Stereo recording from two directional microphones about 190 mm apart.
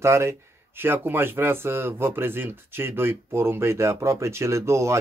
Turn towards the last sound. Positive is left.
turn(degrees=-15)  # may be behind; listen again after turning